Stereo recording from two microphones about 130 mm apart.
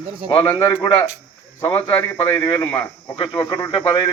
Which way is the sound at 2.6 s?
15° left (ahead or behind).